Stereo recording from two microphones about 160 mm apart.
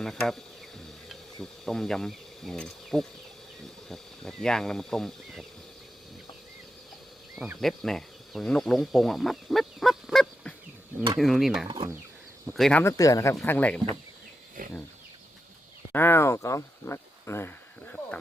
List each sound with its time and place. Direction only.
0.0 s speech: centre (ahead or behind)
1.0 s ratchet: centre (ahead or behind)
3.8 s speech: centre (ahead or behind)
7.3 s speech: centre (ahead or behind)
12.8 s speech: 20° left (ahead or behind)
14.6 s speech: 60° right (ahead or behind)
15.9 s speech: 15° left (ahead or behind)